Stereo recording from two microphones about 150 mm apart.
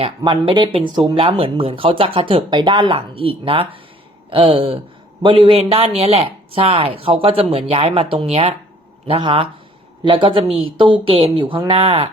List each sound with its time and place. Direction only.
0.2 s speech: 30° right (ahead or behind)